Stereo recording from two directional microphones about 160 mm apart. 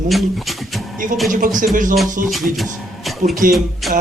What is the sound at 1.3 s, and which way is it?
Speech, 55° right (ahead or behind).